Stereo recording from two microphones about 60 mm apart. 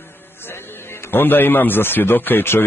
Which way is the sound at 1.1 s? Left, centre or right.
Left.